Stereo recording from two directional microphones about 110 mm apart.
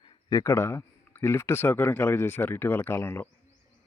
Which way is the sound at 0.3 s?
30° left (ahead or behind).